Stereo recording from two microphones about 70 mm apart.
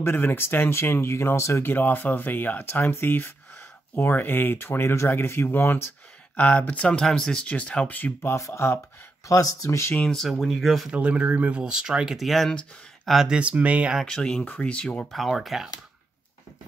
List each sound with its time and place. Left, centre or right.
0.0 s speech: left
1.6 s speech: left
6.3 s speech: left
8.2 s speech: left
9.3 s speech: left
9.9 s speech: centre
10.9 s speech: centre
13.1 s speech: centre
13.4 s speech: centre
14.0 s speech: centre
15.1 s speech: centre